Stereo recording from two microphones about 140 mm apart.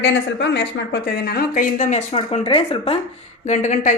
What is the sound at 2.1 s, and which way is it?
Speech, 45° left (ahead or behind).